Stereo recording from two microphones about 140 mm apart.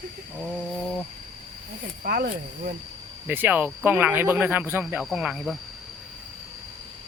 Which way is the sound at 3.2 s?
15° right (ahead or behind).